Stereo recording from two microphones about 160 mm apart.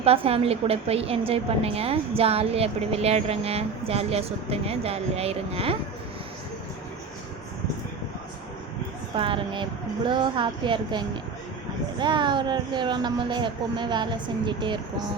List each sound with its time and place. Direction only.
0.0 s a woman's voice: 35° right (ahead or behind)
9.1 s a woman's voice: 35° right (ahead or behind)